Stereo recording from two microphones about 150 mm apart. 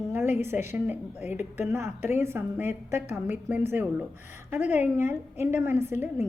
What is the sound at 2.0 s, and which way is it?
A woman's voice, 15° right (ahead or behind).